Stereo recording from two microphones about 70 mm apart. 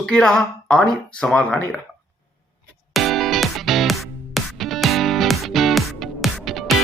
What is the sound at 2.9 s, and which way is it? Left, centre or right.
Music, centre.